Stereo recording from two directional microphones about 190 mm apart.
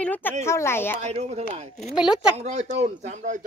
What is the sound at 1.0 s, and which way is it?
Speech, 35° right (ahead or behind).